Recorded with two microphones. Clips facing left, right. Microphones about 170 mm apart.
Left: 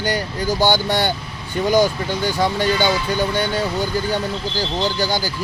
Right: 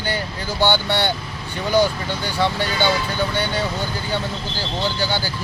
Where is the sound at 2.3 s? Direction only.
15° left (ahead or behind).